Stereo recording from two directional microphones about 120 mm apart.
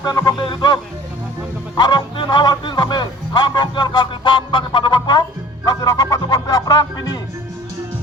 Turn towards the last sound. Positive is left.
turn(degrees=35)  # may be behind; listen again after turning